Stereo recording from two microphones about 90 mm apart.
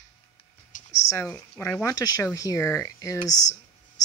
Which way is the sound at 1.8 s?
45° left (ahead or behind).